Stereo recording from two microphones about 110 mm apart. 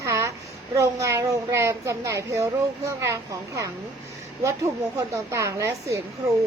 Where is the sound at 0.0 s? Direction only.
25° right (ahead or behind).